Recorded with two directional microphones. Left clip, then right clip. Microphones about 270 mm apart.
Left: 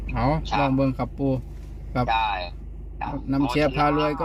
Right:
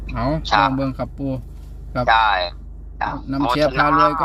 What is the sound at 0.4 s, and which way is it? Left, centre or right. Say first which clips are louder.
Speech: right 7 dB; right.